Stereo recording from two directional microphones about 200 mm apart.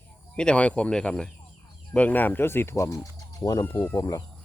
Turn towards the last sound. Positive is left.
turn(degrees=20)  # may be behind; listen again after turning